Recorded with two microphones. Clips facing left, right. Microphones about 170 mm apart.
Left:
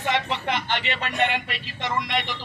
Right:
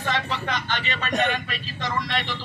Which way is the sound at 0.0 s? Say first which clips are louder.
Left 2 dB; 20° left (ahead or behind).